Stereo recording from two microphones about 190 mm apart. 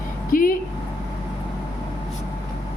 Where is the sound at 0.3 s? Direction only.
45° left (ahead or behind).